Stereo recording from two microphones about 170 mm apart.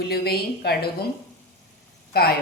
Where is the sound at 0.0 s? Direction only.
70° left (ahead or behind).